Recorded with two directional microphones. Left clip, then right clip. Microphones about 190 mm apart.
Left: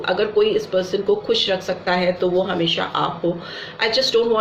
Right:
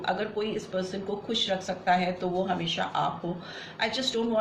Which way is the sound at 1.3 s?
40° left (ahead or behind).